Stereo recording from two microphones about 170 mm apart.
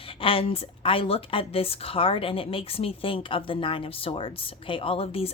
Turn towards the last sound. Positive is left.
turn(degrees=35)  # may be behind; listen again after turning